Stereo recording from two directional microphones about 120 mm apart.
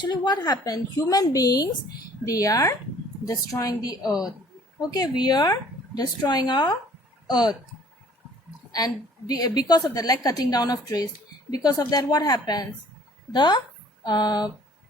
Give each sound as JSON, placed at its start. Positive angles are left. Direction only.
{"t": 0.0, "sound": "a woman's voice", "side_deg": 35}
{"t": 9.3, "sound": "a woman's voice", "side_deg": 35}